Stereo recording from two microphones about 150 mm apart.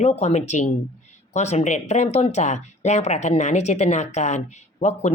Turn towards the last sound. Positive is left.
turn(degrees=50)  # may be behind; listen again after turning